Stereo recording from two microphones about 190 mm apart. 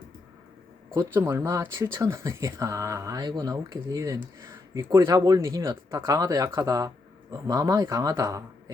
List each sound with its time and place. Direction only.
0.9 s speech: 15° right (ahead or behind)